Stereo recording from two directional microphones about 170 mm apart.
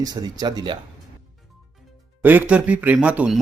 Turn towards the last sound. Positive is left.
turn(degrees=-5)  # may be behind; listen again after turning